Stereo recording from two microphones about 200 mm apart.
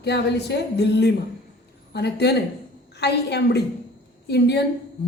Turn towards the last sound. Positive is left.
turn(degrees=55)  # may be behind; listen again after turning